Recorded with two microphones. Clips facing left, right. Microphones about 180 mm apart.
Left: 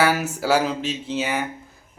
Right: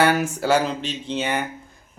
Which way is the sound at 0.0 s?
5° left (ahead or behind).